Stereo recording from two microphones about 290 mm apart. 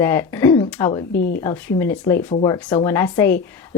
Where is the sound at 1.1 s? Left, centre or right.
Left.